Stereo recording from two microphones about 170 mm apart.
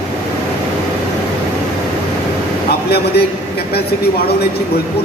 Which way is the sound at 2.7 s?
70° left (ahead or behind).